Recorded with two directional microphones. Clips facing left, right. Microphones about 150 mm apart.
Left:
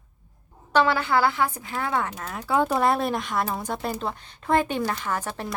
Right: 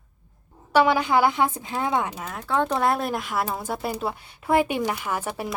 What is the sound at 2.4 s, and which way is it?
Speech, 5° left (ahead or behind).